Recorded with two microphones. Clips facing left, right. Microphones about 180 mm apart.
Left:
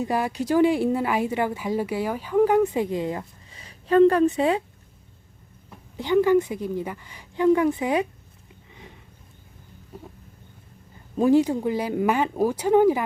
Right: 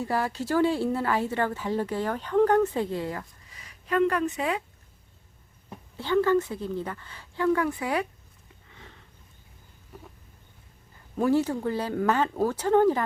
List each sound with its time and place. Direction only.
0.0 s speech: 15° left (ahead or behind)
6.0 s speech: 15° left (ahead or behind)
8.7 s sniff: 15° left (ahead or behind)
11.2 s speech: 15° left (ahead or behind)